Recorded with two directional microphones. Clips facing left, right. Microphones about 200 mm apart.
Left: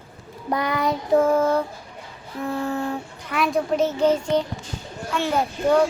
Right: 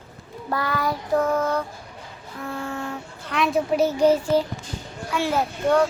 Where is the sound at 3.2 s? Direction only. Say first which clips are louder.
Even; centre (ahead or behind).